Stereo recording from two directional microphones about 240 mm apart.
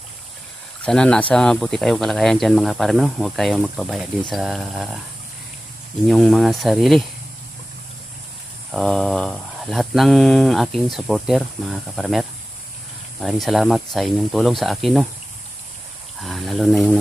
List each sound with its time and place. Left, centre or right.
0.8 s speech: centre
6.0 s speech: centre
8.7 s speech: centre
16.2 s speech: centre